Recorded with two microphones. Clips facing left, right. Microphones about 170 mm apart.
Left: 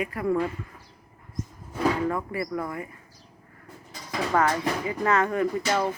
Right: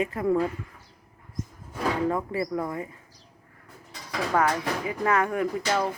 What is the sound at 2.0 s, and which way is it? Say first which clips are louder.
Speech: right 1 dB; 20° right (ahead or behind).